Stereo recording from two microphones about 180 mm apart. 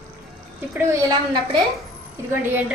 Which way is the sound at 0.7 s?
15° right (ahead or behind).